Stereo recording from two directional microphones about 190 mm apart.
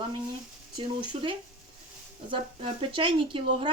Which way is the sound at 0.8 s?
25° right (ahead or behind).